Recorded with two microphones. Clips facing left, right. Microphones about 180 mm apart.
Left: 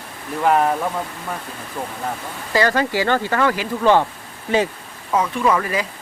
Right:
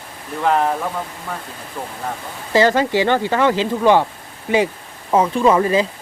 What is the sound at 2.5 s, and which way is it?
Speech, 20° right (ahead or behind).